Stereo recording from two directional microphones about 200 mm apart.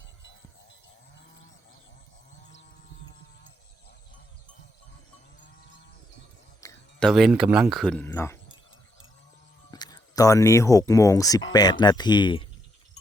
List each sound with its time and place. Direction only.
6.6 s a sound: 15° left (ahead or behind)
7.0 s speech: centre (ahead or behind)
9.7 s speech: 20° left (ahead or behind)